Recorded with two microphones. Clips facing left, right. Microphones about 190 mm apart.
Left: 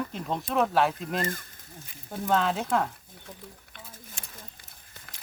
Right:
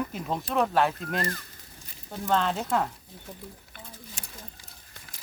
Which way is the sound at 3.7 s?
5° right (ahead or behind).